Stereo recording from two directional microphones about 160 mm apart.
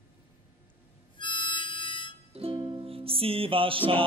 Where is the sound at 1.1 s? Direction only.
30° left (ahead or behind).